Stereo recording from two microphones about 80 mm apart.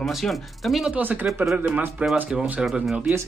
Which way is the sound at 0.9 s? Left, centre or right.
Right.